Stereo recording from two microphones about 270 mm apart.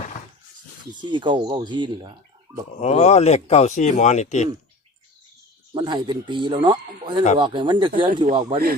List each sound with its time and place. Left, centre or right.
1.0 s speech: centre
2.8 s speech: left
5.7 s speech: centre